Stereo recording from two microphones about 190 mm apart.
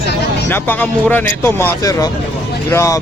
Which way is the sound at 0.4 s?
10° left (ahead or behind).